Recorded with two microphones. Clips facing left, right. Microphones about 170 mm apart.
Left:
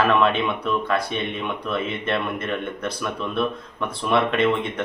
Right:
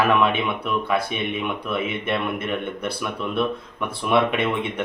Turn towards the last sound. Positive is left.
turn(degrees=-10)  # may be behind; listen again after turning